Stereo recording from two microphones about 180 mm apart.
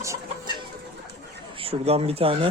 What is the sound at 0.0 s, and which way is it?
Chicken, 15° right (ahead or behind).